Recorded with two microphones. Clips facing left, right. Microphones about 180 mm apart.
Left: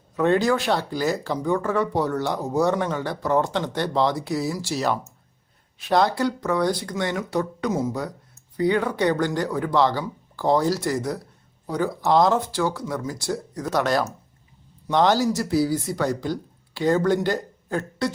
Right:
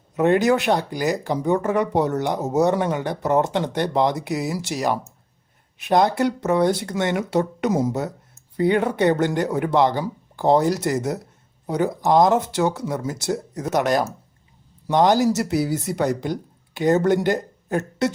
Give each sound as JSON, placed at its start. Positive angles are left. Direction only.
{"t": 0.2, "sound": "speech", "side_deg": -20}